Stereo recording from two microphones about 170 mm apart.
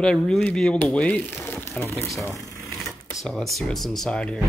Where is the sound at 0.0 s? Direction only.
5° left (ahead or behind).